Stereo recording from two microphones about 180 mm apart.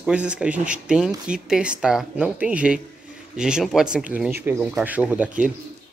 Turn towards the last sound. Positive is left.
turn(degrees=-5)  # may be behind; listen again after turning